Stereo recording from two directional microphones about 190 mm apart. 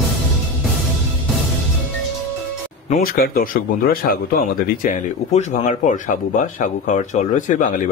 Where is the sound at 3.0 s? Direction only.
50° left (ahead or behind).